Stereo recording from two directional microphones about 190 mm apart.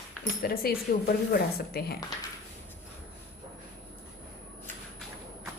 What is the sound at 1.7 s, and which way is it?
Speech, 55° left (ahead or behind).